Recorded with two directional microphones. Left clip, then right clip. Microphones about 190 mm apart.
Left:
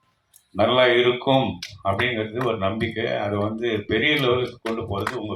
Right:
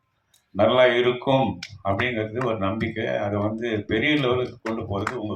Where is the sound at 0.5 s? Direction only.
45° left (ahead or behind).